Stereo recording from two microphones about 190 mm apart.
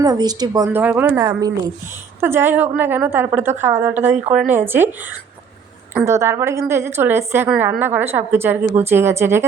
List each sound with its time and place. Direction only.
0.0 s a woman's voice: 20° right (ahead or behind)
4.1 s speech: 40° right (ahead or behind)
4.4 s a woman's voice: 10° right (ahead or behind)